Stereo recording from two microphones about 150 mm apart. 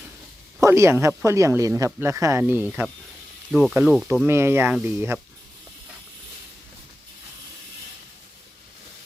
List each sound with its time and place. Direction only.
0.6 s speech: 20° right (ahead or behind)
3.5 s speech: centre (ahead or behind)
4.3 s speech: 15° right (ahead or behind)